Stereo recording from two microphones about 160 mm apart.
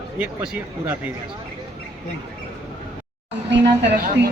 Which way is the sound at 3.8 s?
70° right (ahead or behind).